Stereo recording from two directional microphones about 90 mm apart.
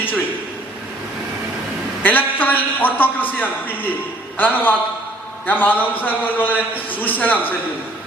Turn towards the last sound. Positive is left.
turn(degrees=20)  # may be behind; listen again after turning